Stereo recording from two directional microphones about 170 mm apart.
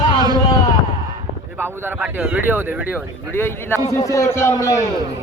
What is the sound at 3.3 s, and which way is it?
A man's voice, 15° left (ahead or behind).